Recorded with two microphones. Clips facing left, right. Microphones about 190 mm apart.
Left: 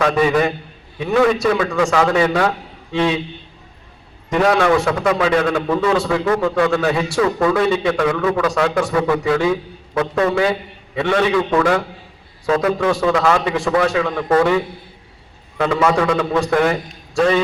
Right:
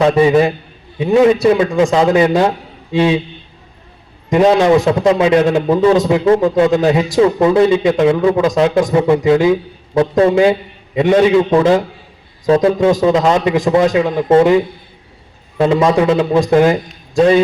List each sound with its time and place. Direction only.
0.0 s a man's voice: 25° right (ahead or behind)
4.5 s a man's voice: 15° right (ahead or behind)